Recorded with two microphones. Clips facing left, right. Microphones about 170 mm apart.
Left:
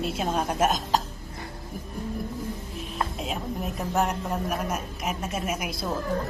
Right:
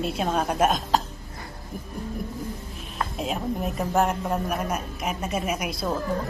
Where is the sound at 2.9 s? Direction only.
Centre (ahead or behind).